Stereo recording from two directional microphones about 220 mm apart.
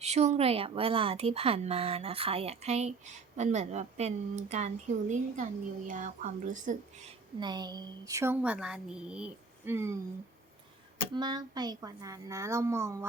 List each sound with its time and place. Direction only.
0.0 s a woman's voice: 30° right (ahead or behind)
7.3 s speech: 20° right (ahead or behind)
11.1 s speech: 20° right (ahead or behind)